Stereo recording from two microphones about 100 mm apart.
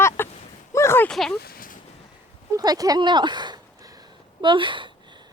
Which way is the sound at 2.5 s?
40° right (ahead or behind).